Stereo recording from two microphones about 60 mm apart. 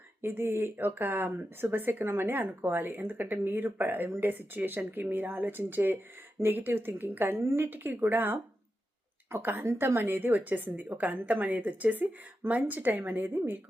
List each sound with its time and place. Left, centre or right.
0.2 s a woman's voice: right